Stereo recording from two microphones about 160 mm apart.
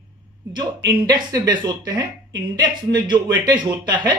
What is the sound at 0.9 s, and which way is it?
Speech, 25° right (ahead or behind).